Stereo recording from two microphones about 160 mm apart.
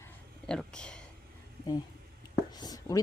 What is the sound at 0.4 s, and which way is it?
Speech, 5° left (ahead or behind).